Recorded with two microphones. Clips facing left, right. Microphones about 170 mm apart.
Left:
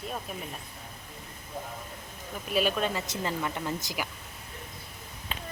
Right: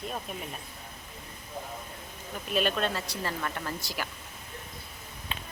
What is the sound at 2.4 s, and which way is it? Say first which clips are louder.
Speech: left 1 dB; 10° left (ahead or behind).